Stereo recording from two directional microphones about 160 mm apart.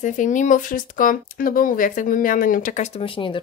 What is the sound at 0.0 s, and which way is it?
A woman's voice, 50° left (ahead or behind).